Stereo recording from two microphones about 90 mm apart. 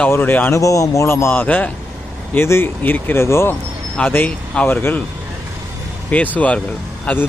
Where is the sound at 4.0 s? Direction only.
15° left (ahead or behind).